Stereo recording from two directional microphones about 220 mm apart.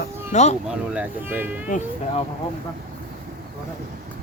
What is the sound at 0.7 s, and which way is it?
Speech, 5° right (ahead or behind).